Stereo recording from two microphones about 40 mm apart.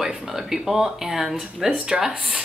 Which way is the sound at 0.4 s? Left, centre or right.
Centre.